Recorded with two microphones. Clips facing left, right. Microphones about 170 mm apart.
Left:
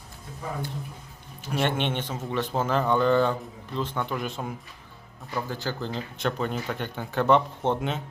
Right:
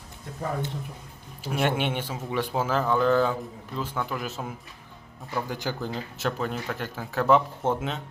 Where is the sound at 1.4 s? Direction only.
5° right (ahead or behind).